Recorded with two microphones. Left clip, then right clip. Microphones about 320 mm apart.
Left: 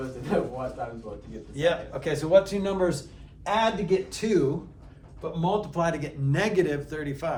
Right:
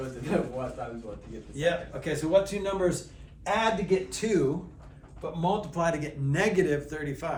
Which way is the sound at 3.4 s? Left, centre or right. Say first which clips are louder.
Left 2 dB; centre.